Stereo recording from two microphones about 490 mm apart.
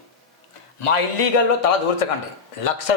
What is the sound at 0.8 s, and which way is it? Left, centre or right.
Speech, left.